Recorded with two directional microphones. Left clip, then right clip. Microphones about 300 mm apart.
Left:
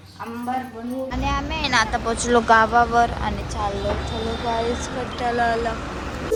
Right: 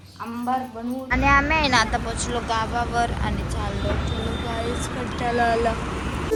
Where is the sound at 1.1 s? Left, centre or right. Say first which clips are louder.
Right 9 dB; centre.